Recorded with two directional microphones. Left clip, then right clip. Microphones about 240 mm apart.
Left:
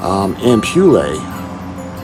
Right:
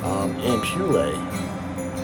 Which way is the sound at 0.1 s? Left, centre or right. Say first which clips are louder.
Left 10 dB; left.